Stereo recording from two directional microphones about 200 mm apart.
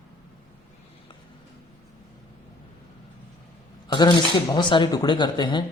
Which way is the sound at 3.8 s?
20° left (ahead or behind).